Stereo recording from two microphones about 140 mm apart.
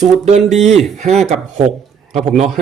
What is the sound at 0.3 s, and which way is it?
Speech, 55° right (ahead or behind).